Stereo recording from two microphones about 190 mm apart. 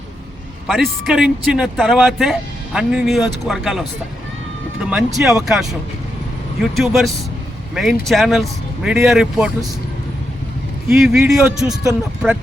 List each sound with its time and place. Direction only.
0.7 s speech: centre (ahead or behind)
10.8 s speech: centre (ahead or behind)